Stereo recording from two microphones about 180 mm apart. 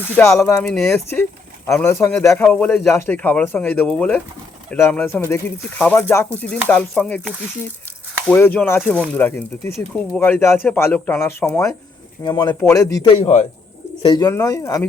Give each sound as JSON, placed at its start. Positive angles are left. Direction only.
{"t": 0.2, "sound": "speech", "side_deg": 15}
{"t": 13.1, "sound": "a man's voice", "side_deg": 40}
{"t": 14.0, "sound": "speech", "side_deg": 25}